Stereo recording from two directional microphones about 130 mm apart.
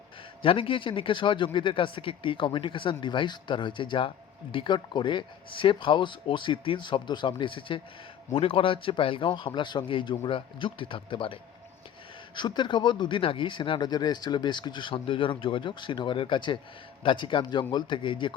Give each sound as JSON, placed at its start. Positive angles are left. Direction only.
{"t": 0.4, "sound": "speech", "side_deg": 40}
{"t": 12.4, "sound": "speech", "side_deg": 35}